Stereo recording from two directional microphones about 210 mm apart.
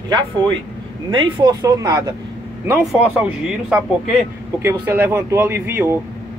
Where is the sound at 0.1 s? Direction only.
20° right (ahead or behind).